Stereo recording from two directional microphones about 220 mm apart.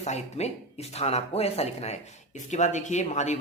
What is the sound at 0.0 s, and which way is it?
Speech, 30° left (ahead or behind).